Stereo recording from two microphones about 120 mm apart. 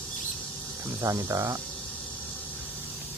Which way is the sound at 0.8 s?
25° right (ahead or behind).